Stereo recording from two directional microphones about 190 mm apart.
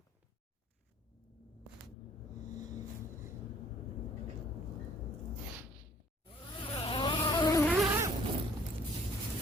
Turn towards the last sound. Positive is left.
turn(degrees=0)  # may be behind; listen again after turning